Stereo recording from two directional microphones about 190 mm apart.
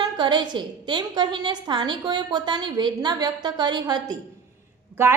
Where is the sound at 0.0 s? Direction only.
25° right (ahead or behind).